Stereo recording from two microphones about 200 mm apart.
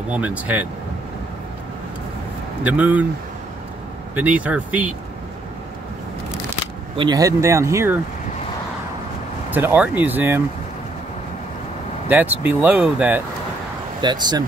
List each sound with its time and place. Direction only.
0.1 s speech: 5° right (ahead or behind)
2.6 s speech: 5° right (ahead or behind)
4.1 s speech: 10° right (ahead or behind)
7.0 s speech: 20° right (ahead or behind)
9.5 s speech: 10° right (ahead or behind)
12.1 s speech: 10° right (ahead or behind)
14.0 s speech: 20° right (ahead or behind)